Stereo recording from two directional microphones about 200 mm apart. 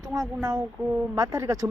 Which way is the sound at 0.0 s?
20° right (ahead or behind).